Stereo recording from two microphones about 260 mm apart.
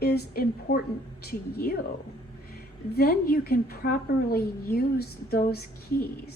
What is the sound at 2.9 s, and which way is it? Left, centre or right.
A woman's voice, left.